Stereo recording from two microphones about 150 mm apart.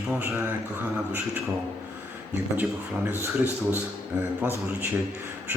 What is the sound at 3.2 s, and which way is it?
Speech, 15° right (ahead or behind).